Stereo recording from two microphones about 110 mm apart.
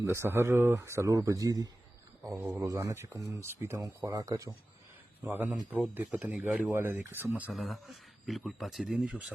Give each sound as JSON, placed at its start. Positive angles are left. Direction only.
{"t": 0.0, "sound": "speech", "side_deg": -25}
{"t": 5.2, "sound": "speech", "side_deg": -15}
{"t": 7.5, "sound": "speech", "side_deg": 0}